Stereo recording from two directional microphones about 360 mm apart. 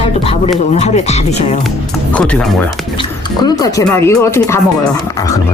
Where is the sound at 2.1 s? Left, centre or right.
Centre.